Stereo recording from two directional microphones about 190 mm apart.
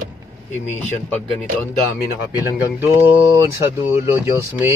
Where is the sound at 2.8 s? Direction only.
10° right (ahead or behind).